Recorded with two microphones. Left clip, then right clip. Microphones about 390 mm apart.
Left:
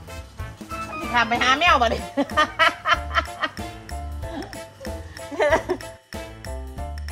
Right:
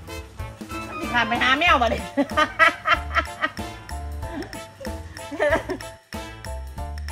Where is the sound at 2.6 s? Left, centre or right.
Centre.